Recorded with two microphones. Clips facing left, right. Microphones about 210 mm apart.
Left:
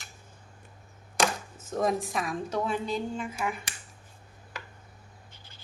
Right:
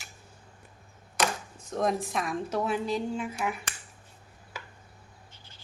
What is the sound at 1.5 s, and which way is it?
A woman's voice, centre (ahead or behind).